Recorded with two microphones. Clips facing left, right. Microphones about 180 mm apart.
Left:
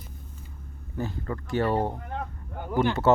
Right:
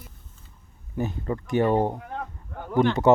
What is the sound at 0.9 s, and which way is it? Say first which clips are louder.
Speech: right 4 dB; 20° right (ahead or behind).